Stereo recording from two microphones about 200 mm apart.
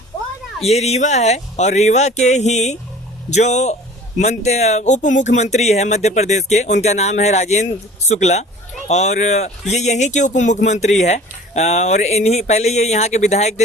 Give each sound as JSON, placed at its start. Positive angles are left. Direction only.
{"t": 0.6, "sound": "speech", "side_deg": 30}